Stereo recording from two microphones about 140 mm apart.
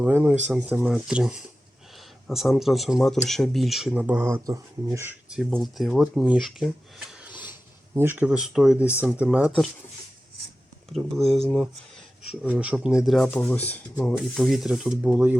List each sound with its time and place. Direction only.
0.0 s speech: 10° right (ahead or behind)
5.3 s speech: centre (ahead or behind)
10.9 s speech: centre (ahead or behind)
13.4 s speech: 10° left (ahead or behind); by 15.4 s 10° right (ahead or behind)